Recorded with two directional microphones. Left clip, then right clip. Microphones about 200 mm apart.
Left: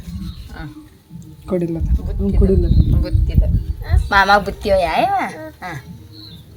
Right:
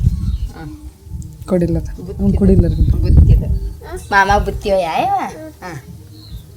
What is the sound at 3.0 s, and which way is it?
A woman's voice, 15° left (ahead or behind).